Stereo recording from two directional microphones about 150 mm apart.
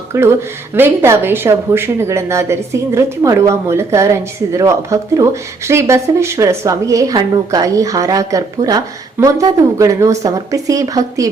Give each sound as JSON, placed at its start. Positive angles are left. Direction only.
{"t": 0.1, "sound": "speech", "side_deg": -15}